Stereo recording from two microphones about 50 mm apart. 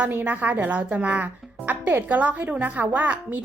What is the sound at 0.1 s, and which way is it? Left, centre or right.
A woman's voice, right.